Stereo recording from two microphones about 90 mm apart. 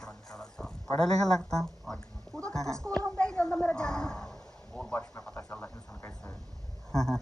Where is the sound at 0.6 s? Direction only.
15° left (ahead or behind).